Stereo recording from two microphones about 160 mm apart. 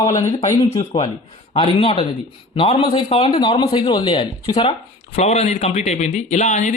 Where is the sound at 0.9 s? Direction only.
35° left (ahead or behind).